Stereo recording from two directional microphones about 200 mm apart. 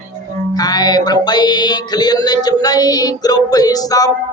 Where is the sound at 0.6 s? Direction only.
20° left (ahead or behind).